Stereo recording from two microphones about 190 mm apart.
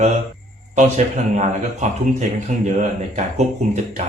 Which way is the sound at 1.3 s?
40° right (ahead or behind).